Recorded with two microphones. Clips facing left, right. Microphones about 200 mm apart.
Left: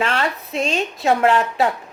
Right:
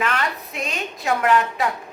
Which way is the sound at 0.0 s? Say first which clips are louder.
Left 3 dB; 30° left (ahead or behind).